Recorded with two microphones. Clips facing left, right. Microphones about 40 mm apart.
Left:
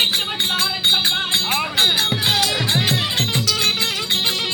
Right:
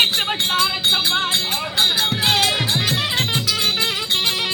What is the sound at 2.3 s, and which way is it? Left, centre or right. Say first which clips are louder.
Music: right 1 dB; right.